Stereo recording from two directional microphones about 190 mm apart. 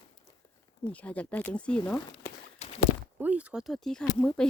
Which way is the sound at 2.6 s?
35° left (ahead or behind).